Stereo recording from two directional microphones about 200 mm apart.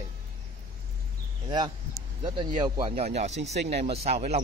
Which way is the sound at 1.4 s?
20° right (ahead or behind).